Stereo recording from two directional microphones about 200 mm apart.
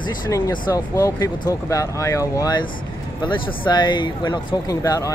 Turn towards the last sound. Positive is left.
turn(degrees=15)  # may be behind; listen again after turning